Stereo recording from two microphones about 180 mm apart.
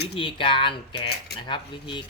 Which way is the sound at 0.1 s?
30° left (ahead or behind).